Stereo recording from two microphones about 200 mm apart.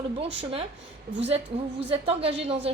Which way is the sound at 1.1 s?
50° right (ahead or behind).